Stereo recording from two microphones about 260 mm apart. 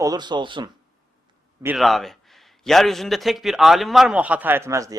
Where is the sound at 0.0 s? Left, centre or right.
Centre.